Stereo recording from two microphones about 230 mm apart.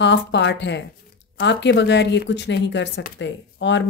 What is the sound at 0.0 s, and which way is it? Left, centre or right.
Speech, left.